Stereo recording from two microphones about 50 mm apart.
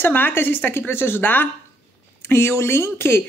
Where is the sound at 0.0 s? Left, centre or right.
Left.